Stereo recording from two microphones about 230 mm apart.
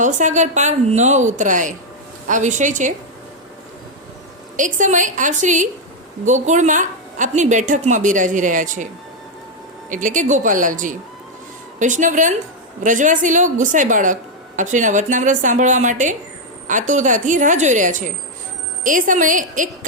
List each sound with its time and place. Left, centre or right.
0.0 s a woman's voice: right
4.5 s a woman's voice: right
9.9 s a woman's voice: right